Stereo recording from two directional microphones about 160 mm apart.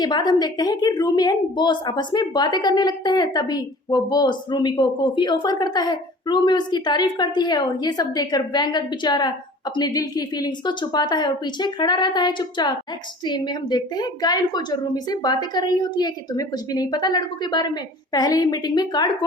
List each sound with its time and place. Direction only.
0.0 s a woman's voice: 25° left (ahead or behind)